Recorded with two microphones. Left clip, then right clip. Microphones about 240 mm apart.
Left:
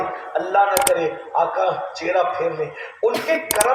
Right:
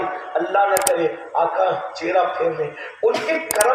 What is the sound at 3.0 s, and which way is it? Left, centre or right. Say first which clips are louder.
Speech: right 1 dB; left.